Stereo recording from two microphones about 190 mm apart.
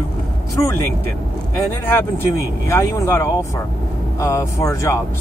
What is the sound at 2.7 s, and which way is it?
Speech, 15° left (ahead or behind).